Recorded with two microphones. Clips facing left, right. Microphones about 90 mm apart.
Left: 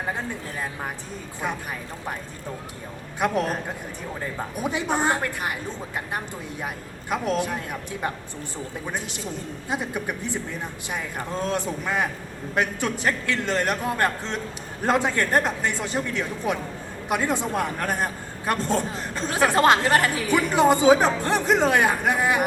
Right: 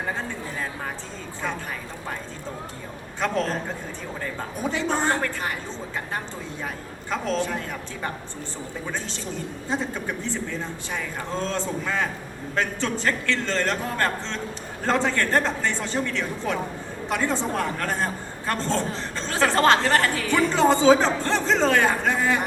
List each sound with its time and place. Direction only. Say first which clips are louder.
3.2 s a woman's voice: left 1 dB; 15° left (ahead or behind)
7.1 s a woman's voice: left 1 dB; 15° left (ahead or behind)